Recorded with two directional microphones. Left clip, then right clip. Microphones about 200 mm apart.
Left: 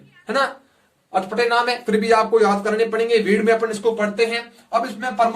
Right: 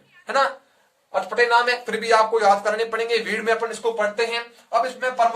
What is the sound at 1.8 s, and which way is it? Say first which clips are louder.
Speech: left 2 dB; 25° right (ahead or behind).